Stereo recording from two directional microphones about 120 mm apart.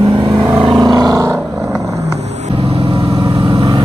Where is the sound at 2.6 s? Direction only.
55° right (ahead or behind).